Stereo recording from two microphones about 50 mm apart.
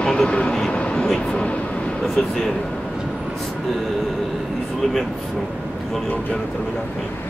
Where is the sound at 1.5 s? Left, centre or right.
Left.